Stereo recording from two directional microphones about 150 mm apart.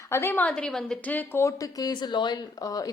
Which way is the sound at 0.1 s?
15° left (ahead or behind).